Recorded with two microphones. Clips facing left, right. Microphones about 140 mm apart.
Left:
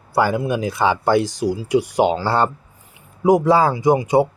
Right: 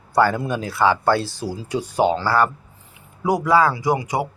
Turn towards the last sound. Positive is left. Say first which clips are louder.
# left 6 dB
turn(degrees=25)  # may be behind; listen again after turning